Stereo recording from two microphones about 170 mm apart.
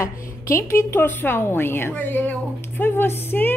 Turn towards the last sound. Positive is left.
turn(degrees=10)  # may be behind; listen again after turning